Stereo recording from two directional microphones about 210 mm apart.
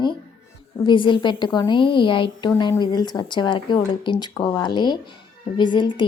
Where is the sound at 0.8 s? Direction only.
20° left (ahead or behind).